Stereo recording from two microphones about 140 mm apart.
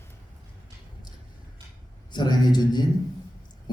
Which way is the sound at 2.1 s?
30° left (ahead or behind).